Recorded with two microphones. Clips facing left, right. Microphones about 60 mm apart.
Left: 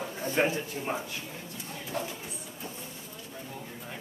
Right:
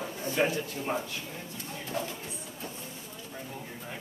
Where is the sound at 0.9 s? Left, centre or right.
Centre.